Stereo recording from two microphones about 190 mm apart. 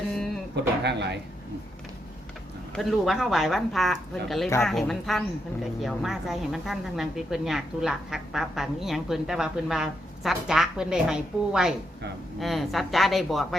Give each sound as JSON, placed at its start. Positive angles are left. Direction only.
{"t": 0.9, "sound": "a man's voice", "side_deg": -65}
{"t": 2.7, "sound": "a woman's voice", "side_deg": 0}